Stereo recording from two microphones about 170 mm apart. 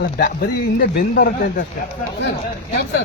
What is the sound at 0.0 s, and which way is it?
Speech, 55° left (ahead or behind).